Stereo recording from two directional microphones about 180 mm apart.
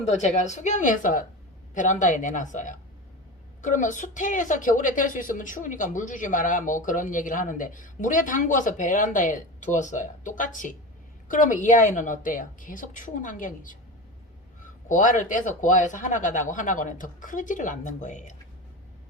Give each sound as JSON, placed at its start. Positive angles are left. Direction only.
{"t": 0.0, "sound": "a woman's voice", "side_deg": 40}
{"t": 14.8, "sound": "a woman's voice", "side_deg": 45}